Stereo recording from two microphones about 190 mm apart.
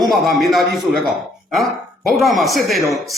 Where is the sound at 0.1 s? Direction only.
Centre (ahead or behind).